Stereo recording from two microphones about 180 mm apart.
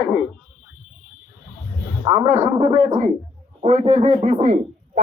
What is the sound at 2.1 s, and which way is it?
A man's voice, 35° right (ahead or behind).